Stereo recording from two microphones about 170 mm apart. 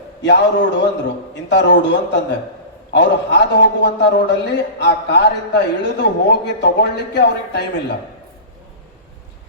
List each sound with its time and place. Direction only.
0.2 s a man's voice: 90° left